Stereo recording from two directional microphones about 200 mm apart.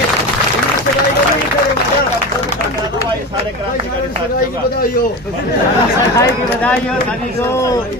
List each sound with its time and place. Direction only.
6.1 s speech: 5° left (ahead or behind)